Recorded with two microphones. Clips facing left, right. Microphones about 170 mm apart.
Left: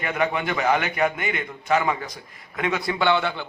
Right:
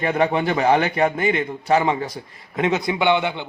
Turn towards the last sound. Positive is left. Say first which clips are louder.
# right 3 dB
turn(degrees=-20)  # may be behind; listen again after turning